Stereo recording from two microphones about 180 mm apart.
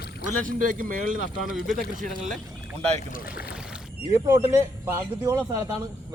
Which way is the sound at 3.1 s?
55° left (ahead or behind).